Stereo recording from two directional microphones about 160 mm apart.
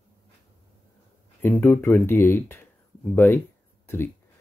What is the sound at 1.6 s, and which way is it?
Speech, 15° left (ahead or behind).